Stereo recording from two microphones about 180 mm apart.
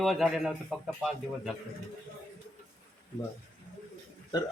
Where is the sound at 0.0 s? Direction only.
Centre (ahead or behind).